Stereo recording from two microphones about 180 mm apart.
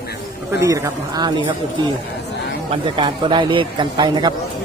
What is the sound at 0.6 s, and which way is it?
Speech, 15° right (ahead or behind).